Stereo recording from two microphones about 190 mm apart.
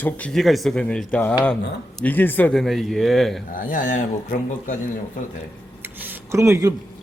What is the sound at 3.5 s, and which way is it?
Speech, 45° left (ahead or behind).